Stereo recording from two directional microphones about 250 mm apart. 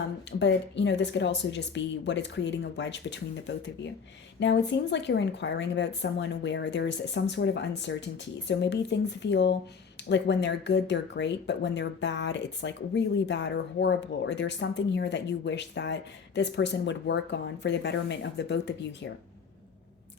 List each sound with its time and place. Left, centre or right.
0.3 s speech: left